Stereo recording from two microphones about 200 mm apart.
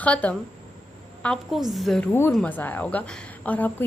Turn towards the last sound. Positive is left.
turn(degrees=10)  # may be behind; listen again after turning